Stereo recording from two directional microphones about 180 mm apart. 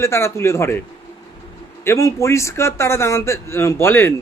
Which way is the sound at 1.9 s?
15° left (ahead or behind).